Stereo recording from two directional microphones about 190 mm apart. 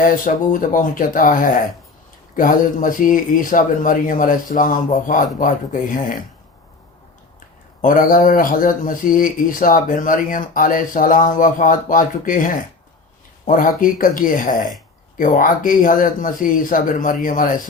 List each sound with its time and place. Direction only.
0.0 s speech: 45° left (ahead or behind)
7.8 s speech: 45° left (ahead or behind)